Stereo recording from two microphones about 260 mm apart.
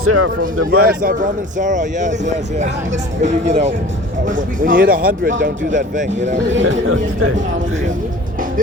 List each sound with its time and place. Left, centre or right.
0.0 s speech: right
0.7 s speech: right
6.5 s speech: right